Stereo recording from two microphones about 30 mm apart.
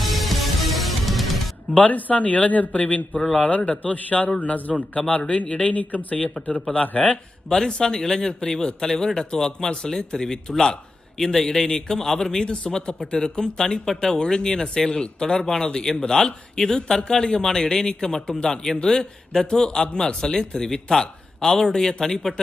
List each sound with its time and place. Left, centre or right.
0.0 s music: centre
1.7 s speech: left
4.7 s a man's voice: left
5.6 s speech: left
7.5 s a man's voice: left
12.7 s a man's voice: left; by 22.4 s centre